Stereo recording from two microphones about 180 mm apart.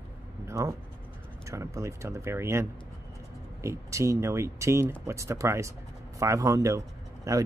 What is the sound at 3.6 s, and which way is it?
Speech, 15° right (ahead or behind).